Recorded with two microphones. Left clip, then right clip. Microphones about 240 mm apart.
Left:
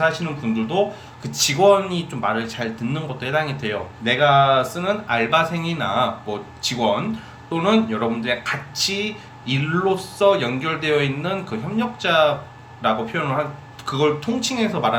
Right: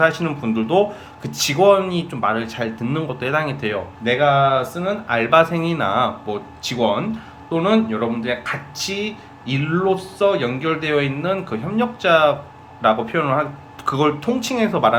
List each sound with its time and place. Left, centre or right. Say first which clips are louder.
0.0 s speech: right 3 dB; centre